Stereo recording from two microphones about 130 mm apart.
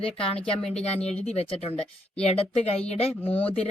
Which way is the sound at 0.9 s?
55° left (ahead or behind).